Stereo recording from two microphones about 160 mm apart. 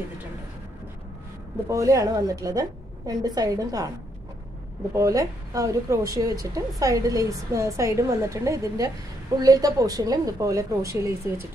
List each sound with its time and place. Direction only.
1.7 s a woman's voice: 20° right (ahead or behind)
4.9 s a woman's voice: 20° right (ahead or behind)